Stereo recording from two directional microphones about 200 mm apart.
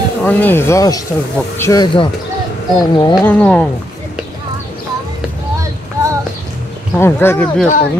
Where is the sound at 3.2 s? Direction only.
5° left (ahead or behind).